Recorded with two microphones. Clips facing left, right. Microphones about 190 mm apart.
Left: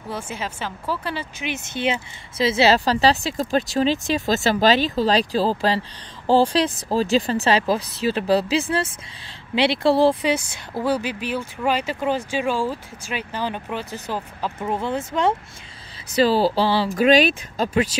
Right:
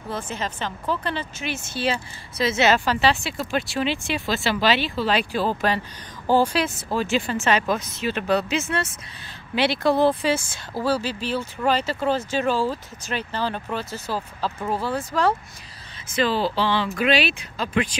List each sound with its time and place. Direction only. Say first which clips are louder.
0.1 s speech: even; 10° left (ahead or behind)
16.2 s speech: left 4 dB; 40° left (ahead or behind)